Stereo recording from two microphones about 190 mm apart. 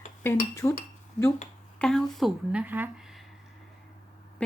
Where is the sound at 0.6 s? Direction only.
20° left (ahead or behind).